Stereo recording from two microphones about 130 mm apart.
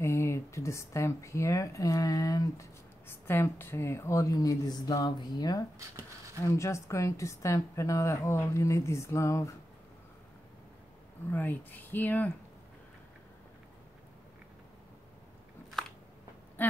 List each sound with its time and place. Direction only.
0.0 s speech: 20° left (ahead or behind)
5.8 s a sound: 25° right (ahead or behind)
6.4 s speech: 20° left (ahead or behind)
11.2 s speech: 15° left (ahead or behind)
16.6 s speech: 15° left (ahead or behind)